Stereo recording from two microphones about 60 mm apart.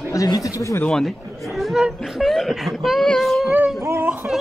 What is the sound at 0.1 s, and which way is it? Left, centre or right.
Speech, left.